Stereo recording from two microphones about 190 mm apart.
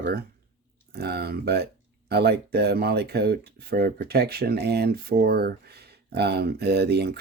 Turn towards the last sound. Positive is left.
turn(degrees=-60)  # may be behind; listen again after turning